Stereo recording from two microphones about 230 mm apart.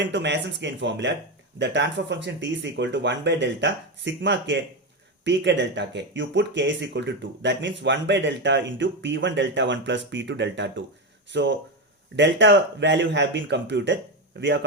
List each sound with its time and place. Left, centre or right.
0.0 s speech: right